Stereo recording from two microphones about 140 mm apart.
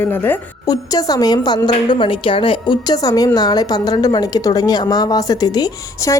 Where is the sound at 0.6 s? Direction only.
25° left (ahead or behind).